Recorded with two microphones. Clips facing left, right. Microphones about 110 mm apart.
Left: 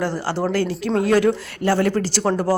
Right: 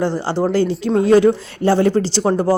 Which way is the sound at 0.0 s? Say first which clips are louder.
Right 4 dB; 20° right (ahead or behind).